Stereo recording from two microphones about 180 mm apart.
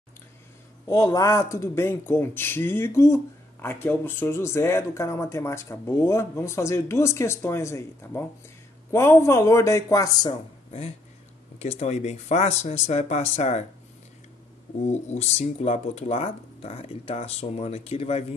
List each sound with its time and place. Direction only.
0.8 s speech: 20° left (ahead or behind)
11.6 s speech: 35° left (ahead or behind)
14.9 s speech: 40° left (ahead or behind)